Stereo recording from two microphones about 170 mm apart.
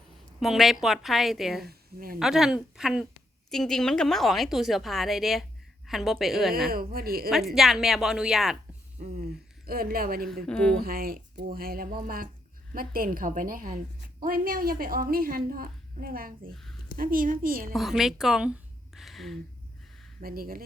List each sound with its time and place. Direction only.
0.3 s speech: centre (ahead or behind)
1.6 s a woman's voice: 60° right (ahead or behind)
2.1 s speech: 5° right (ahead or behind)
6.7 s a woman's voice: 60° right (ahead or behind)
7.3 s speech: centre (ahead or behind)
9.0 s a woman's voice: 60° right (ahead or behind)
10.4 s speech: 5° left (ahead or behind)
10.8 s a woman's voice: 60° right (ahead or behind)
17.7 s speech: centre (ahead or behind)
18.9 s a sound: centre (ahead or behind)
20.2 s a woman's voice: 60° right (ahead or behind)